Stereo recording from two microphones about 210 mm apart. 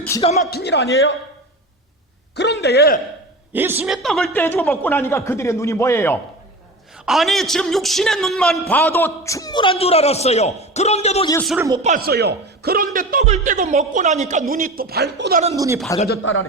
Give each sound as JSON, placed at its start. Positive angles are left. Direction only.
{"t": 0.2, "sound": "a man's voice", "side_deg": 30}
{"t": 0.5, "sound": "a man's voice", "side_deg": 55}
{"t": 2.3, "sound": "speech", "side_deg": 55}
{"t": 3.5, "sound": "a man's voice", "side_deg": -10}
{"t": 6.9, "sound": "a man's voice", "side_deg": 0}
{"t": 11.4, "sound": "speech", "side_deg": -10}
{"t": 11.8, "sound": "a man's voice", "side_deg": -35}
{"t": 12.0, "sound": "a man's voice", "side_deg": -50}
{"t": 15.5, "sound": "speech", "side_deg": -15}
{"t": 16.0, "sound": "speech", "side_deg": 50}